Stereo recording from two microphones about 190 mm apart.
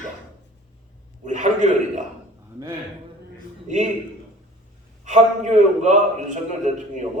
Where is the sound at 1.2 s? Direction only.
40° right (ahead or behind).